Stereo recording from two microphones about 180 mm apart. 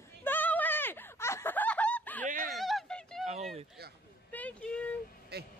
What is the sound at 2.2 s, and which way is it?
Fowl, 45° right (ahead or behind).